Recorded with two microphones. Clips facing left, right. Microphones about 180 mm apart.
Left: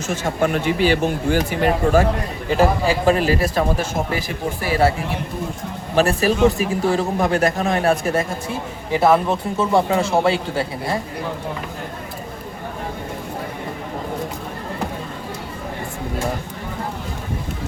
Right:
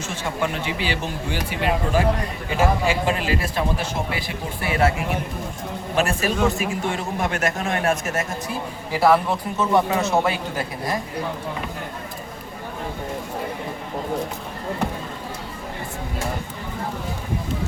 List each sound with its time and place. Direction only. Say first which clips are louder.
0.1 s a man's voice: left 6 dB; 45° left (ahead or behind)
6.0 s a man's voice: left 5 dB; 35° left (ahead or behind)
8.9 s a man's voice: left 2 dB; 20° left (ahead or behind)